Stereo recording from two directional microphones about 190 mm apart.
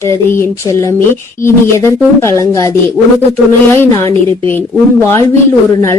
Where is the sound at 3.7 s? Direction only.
15° left (ahead or behind).